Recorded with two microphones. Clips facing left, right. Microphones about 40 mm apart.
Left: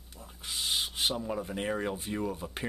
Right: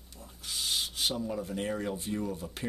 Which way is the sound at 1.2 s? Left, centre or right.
Left.